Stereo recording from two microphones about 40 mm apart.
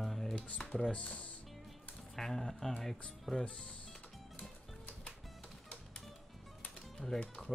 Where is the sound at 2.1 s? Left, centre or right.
Centre.